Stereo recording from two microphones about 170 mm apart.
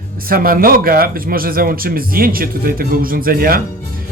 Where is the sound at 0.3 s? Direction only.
60° right (ahead or behind).